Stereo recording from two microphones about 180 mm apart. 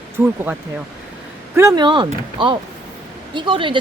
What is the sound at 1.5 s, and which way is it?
Speech, 20° right (ahead or behind).